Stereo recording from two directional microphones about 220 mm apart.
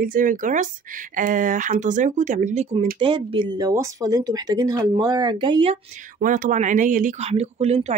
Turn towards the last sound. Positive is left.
turn(degrees=-30)  # may be behind; listen again after turning